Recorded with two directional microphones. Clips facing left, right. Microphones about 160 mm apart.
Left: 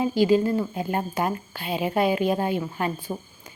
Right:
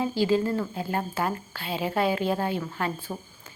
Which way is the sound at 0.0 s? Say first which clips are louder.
Left 4 dB; 15° left (ahead or behind).